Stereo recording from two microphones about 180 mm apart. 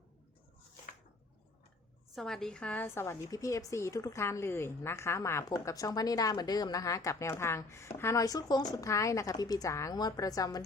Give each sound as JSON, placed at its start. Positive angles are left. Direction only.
{"t": 2.1, "sound": "a woman's voice", "side_deg": 0}